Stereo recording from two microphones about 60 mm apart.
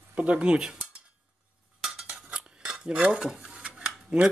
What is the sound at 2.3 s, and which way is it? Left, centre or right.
Cutlery, centre.